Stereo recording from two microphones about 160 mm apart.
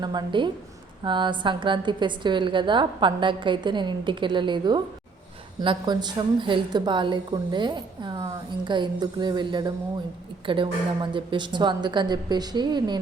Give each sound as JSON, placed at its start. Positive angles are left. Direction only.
{"t": 0.0, "sound": "a woman's voice", "side_deg": -25}